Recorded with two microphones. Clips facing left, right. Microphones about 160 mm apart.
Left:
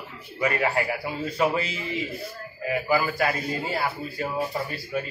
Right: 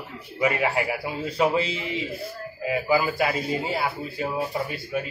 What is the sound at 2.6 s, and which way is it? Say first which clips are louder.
A man's voice: right 1 dB; 15° right (ahead or behind).